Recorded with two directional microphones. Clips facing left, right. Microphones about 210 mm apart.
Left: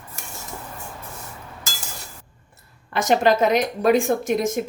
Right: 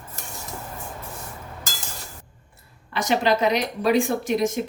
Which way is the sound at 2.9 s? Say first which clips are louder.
Left 3 dB; 50° left (ahead or behind).